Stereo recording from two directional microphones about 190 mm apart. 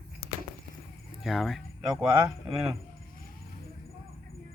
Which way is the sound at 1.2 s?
Centre (ahead or behind).